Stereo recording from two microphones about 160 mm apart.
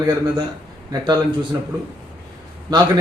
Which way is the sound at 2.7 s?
25° right (ahead or behind).